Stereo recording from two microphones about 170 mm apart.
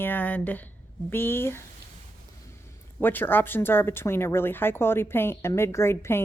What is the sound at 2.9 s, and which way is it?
A woman's voice, 10° left (ahead or behind).